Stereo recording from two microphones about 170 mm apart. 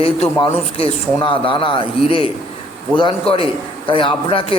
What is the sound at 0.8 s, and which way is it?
A man's voice, 30° left (ahead or behind).